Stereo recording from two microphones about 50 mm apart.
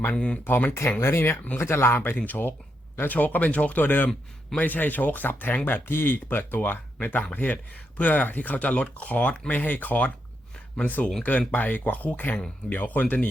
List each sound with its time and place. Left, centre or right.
0.1 s speech: left
0.4 s speech: left
0.7 s speech: left
2.0 s speech: left
3.1 s speech: left
11.2 s speech: left